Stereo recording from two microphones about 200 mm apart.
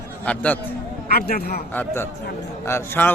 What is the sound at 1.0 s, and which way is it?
Speech, 50° left (ahead or behind).